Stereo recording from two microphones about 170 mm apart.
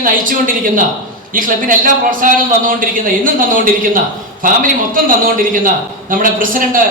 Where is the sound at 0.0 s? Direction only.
55° right (ahead or behind).